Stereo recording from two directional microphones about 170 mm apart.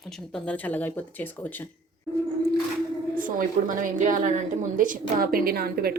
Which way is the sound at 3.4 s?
50° right (ahead or behind).